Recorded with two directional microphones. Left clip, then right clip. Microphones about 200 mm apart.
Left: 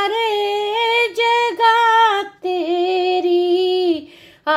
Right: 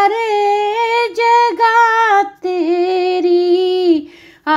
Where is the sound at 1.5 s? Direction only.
20° right (ahead or behind).